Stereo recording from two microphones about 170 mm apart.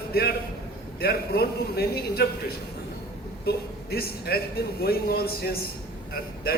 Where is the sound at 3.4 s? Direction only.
65° left (ahead or behind).